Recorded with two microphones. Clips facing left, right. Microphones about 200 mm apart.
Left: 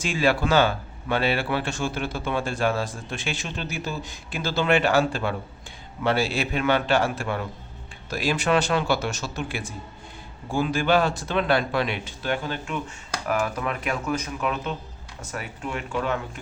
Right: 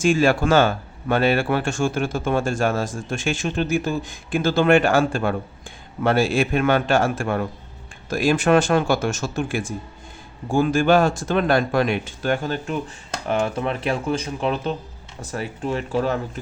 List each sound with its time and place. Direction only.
0.0 s speech: 45° right (ahead or behind)
13.2 s speech: 25° right (ahead or behind)